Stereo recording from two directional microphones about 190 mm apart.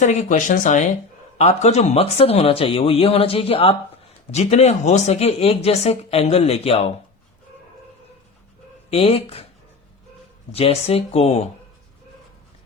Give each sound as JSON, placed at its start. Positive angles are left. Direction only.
{"t": 0.0, "sound": "speech", "side_deg": 40}
{"t": 8.9, "sound": "speech", "side_deg": 30}
{"t": 10.5, "sound": "speech", "side_deg": 30}